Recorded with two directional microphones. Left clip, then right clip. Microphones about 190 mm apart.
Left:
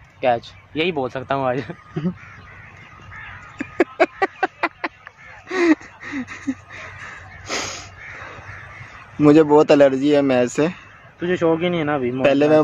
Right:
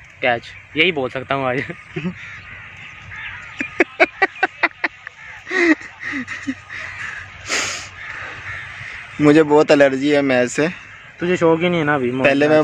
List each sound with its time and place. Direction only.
0.2 s speech: centre (ahead or behind)
3.5 s a sound: 10° left (ahead or behind)
9.2 s a man's voice: 5° left (ahead or behind)
11.1 s speech: 40° right (ahead or behind)
12.2 s speech: 5° left (ahead or behind)